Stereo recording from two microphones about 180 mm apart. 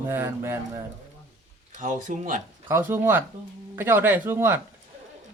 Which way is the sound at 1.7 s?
45° right (ahead or behind).